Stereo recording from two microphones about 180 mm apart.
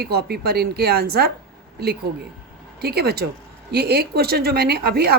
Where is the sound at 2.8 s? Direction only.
60° right (ahead or behind).